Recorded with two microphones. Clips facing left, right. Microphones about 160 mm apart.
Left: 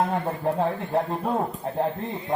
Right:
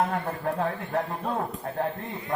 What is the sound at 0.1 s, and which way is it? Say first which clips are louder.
Speech: left 3 dB; 30° left (ahead or behind).